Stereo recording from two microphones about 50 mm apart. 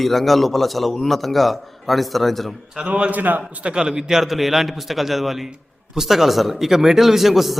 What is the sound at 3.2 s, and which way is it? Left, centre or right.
Speech, right.